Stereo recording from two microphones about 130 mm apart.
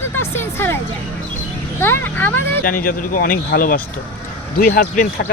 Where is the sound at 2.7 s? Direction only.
90° left.